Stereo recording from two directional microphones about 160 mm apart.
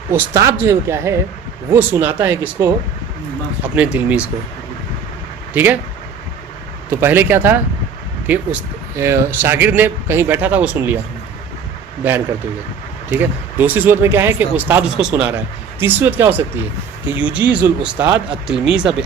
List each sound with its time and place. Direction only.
0.1 s speech: 15° right (ahead or behind)
3.9 s speech: 10° right (ahead or behind)
5.5 s speech: 10° right (ahead or behind)
7.0 s speech: 15° right (ahead or behind)
13.1 s speech: 10° right (ahead or behind)